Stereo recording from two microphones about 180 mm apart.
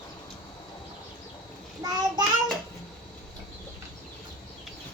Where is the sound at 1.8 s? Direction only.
20° right (ahead or behind).